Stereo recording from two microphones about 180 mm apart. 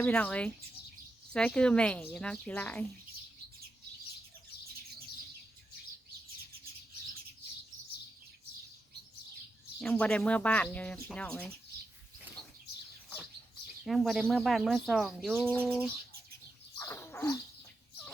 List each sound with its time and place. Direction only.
0.0 s speech: 10° left (ahead or behind)
9.8 s speech: 5° left (ahead or behind)
13.8 s speech: centre (ahead or behind)
16.7 s wild animals: 15° left (ahead or behind)